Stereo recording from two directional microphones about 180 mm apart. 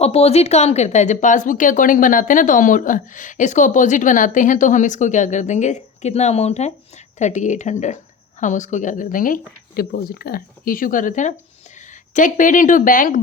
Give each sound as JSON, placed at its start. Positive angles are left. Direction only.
{"t": 0.0, "sound": "speech", "side_deg": 35}